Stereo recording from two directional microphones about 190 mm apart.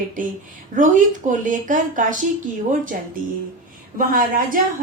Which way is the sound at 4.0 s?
45° right (ahead or behind).